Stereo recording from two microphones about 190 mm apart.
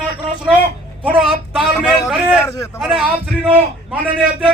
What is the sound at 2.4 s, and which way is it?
Speech, 15° left (ahead or behind).